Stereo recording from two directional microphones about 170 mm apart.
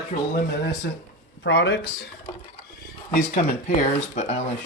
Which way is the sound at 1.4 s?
90° left.